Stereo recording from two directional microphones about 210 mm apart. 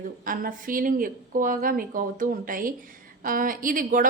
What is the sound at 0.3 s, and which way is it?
A woman's voice, 40° right (ahead or behind).